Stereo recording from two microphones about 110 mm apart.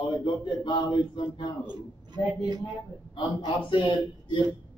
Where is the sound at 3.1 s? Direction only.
45° left (ahead or behind).